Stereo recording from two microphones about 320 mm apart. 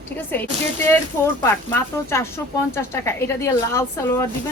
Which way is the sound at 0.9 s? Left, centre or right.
Centre.